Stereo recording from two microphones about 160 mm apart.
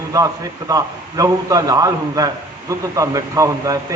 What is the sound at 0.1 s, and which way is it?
A man's voice, 20° right (ahead or behind).